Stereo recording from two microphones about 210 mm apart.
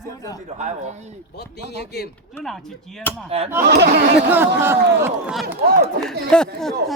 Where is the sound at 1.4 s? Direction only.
50° left (ahead or behind).